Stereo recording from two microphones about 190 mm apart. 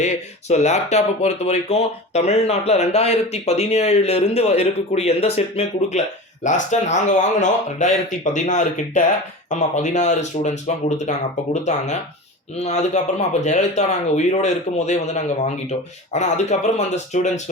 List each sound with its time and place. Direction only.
0.0 s speech: 35° left (ahead or behind)